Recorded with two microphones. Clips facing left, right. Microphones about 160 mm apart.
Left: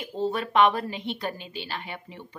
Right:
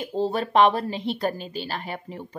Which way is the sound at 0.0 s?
35° right (ahead or behind).